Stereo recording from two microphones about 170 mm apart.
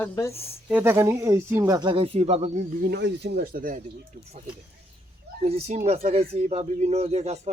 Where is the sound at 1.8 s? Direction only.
30° right (ahead or behind); by 2.9 s 50° right (ahead or behind).